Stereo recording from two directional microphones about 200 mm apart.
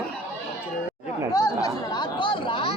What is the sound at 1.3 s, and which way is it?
Chatter, 15° left (ahead or behind).